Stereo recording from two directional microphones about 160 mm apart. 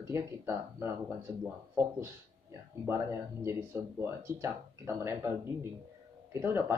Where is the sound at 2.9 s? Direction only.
15° right (ahead or behind).